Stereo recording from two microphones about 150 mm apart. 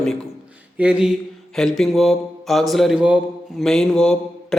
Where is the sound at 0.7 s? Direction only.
10° right (ahead or behind).